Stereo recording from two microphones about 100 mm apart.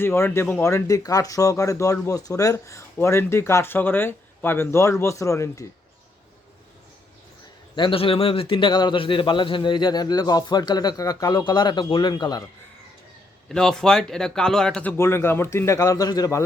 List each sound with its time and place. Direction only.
0.0 s speech: 25° left (ahead or behind)
0.6 s speech: 30° left (ahead or behind)
7.8 s a man's voice: 65° left (ahead or behind); by 12.4 s 45° left (ahead or behind)
13.5 s speech: 5° left (ahead or behind)
14.9 s speech: 25° left (ahead or behind)